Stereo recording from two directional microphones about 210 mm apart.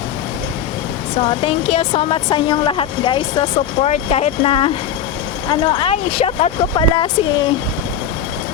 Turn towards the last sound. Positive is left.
turn(degrees=25)  # may be behind; listen again after turning